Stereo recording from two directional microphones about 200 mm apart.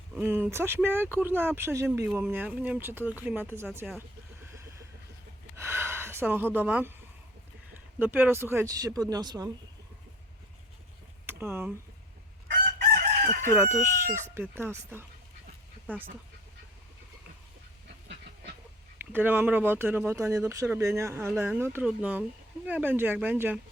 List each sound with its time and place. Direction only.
0.2 s speech: 10° right (ahead or behind)
5.5 s gasp: 10° right (ahead or behind)
7.9 s speech: 10° right (ahead or behind)
11.3 s speech: 10° right (ahead or behind)
13.5 s speech: 10° right (ahead or behind)
19.1 s speech: 10° right (ahead or behind)